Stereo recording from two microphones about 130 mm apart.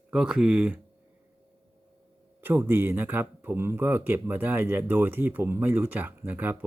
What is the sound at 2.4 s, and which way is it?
Speech, 15° right (ahead or behind).